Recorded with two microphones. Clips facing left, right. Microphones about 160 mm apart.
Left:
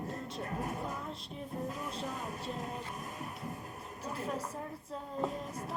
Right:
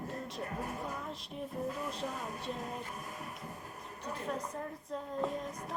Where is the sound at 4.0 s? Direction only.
35° left (ahead or behind).